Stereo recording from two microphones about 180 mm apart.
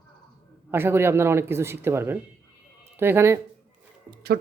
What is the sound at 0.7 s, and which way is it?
Speech, 15° right (ahead or behind).